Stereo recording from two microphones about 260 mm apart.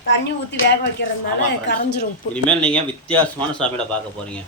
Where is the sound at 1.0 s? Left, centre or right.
Left.